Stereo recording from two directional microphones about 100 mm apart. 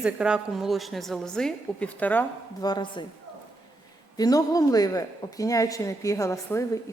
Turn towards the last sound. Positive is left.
turn(degrees=30)  # may be behind; listen again after turning